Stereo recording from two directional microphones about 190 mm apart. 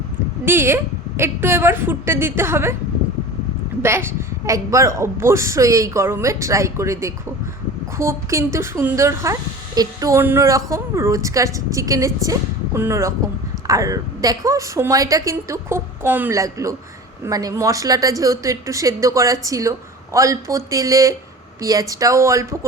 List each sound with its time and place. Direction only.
0.4 s speech: 10° right (ahead or behind)
3.8 s speech: 15° right (ahead or behind)